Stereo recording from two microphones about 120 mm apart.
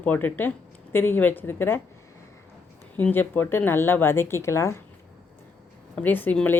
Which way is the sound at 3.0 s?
15° left (ahead or behind).